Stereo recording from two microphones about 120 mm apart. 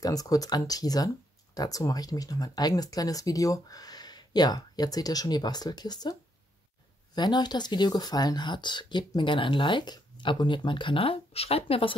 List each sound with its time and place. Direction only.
0.0 s speech: 30° left (ahead or behind)
7.2 s speech: 35° left (ahead or behind)